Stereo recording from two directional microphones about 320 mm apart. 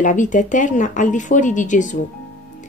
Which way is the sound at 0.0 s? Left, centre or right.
Left.